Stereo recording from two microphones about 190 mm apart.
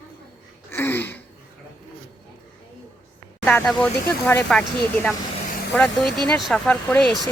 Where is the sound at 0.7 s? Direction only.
10° left (ahead or behind).